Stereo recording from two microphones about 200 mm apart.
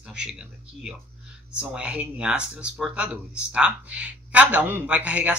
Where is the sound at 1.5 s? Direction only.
5° right (ahead or behind).